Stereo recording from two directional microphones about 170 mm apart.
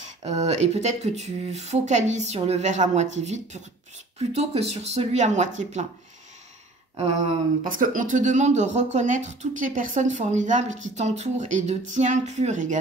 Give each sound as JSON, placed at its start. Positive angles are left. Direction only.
{"t": 0.2, "sound": "speech", "side_deg": -40}
{"t": 7.6, "sound": "speech", "side_deg": -55}